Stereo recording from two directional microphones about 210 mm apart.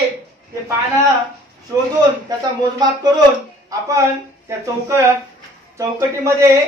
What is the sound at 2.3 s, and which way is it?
Speech, 15° right (ahead or behind).